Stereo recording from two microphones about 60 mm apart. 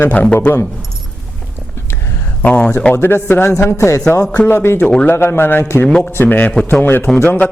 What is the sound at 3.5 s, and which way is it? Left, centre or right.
Speech, left.